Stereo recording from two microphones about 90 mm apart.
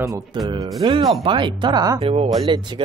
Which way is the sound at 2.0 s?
90° right.